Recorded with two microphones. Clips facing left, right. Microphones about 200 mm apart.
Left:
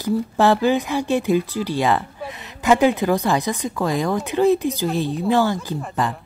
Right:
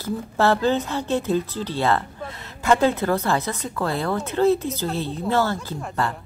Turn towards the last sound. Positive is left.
turn(degrees=15)  # may be behind; listen again after turning